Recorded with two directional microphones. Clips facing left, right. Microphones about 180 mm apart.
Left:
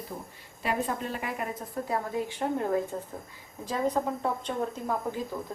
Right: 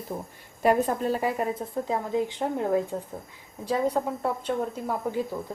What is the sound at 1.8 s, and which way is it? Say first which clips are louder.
A woman's voice: right 3 dB; 20° right (ahead or behind).